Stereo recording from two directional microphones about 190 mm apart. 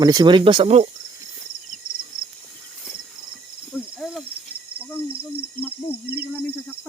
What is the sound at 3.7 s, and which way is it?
Cricket, centre (ahead or behind).